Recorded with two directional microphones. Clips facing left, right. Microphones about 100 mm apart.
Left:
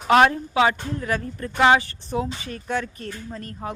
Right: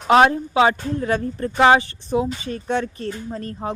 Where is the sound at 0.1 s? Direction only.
25° right (ahead or behind).